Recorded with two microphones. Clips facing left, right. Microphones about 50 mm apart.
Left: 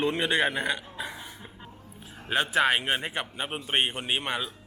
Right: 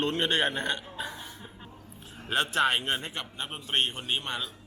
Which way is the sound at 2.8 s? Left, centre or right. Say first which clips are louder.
Left 3 dB; left.